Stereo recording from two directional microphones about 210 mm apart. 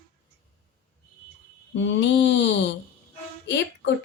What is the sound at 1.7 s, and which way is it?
A woman's voice, 60° left (ahead or behind).